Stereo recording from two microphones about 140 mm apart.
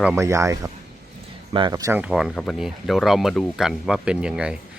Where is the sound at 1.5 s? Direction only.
35° right (ahead or behind).